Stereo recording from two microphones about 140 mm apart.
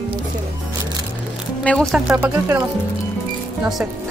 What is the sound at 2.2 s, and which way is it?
Speech, 15° right (ahead or behind).